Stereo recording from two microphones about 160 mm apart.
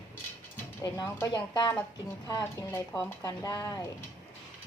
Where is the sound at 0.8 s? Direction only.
20° left (ahead or behind).